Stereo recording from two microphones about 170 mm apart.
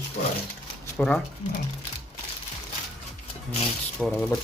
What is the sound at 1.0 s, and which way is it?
Speech, 5° left (ahead or behind).